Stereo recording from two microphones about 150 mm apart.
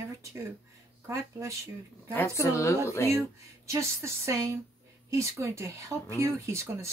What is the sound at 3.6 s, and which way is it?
Speech, 20° right (ahead or behind).